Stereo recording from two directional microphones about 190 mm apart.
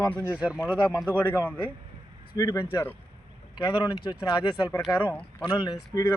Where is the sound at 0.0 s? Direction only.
10° left (ahead or behind).